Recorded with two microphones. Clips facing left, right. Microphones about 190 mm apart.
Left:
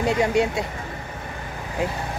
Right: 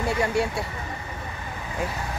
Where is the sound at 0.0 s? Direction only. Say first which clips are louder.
Left 4 dB; 20° left (ahead or behind).